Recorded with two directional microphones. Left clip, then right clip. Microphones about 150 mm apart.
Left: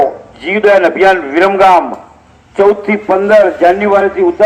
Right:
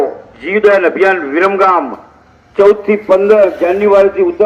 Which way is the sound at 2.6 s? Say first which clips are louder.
Right 1 dB; 30° left (ahead or behind).